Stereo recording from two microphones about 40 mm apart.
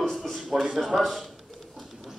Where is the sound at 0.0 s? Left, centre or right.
Centre.